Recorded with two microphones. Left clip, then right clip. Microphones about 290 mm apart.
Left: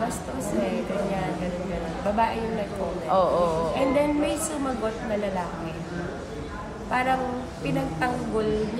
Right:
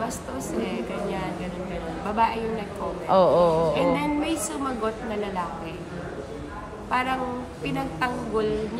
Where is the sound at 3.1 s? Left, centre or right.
Right.